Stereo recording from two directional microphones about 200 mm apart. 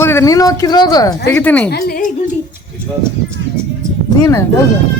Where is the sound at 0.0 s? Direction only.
15° left (ahead or behind).